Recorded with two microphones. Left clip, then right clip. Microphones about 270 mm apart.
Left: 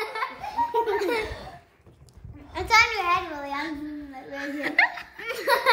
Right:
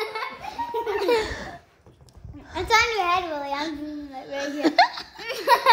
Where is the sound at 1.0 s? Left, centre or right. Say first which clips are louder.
Right 4 dB; right.